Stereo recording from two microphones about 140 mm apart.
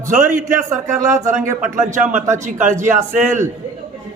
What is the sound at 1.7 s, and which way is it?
A man's voice, 60° right (ahead or behind).